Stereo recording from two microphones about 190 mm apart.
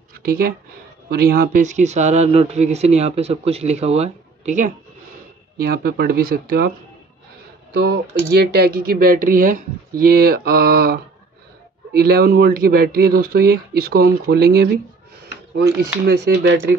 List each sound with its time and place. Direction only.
0.1 s speech: 50° right (ahead or behind)
5.6 s speech: 55° right (ahead or behind)
7.7 s speech: 60° right (ahead or behind)
16.1 s speech: 55° right (ahead or behind)